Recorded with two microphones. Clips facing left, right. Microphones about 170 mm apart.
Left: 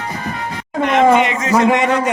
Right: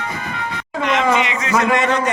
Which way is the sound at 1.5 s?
25° left (ahead or behind).